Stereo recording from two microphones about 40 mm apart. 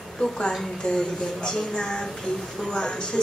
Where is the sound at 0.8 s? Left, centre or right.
Centre.